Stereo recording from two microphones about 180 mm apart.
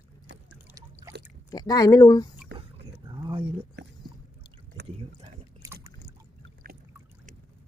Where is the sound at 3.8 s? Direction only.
70° right (ahead or behind).